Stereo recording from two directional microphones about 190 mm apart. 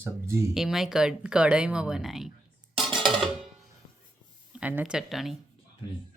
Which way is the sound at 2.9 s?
25° right (ahead or behind).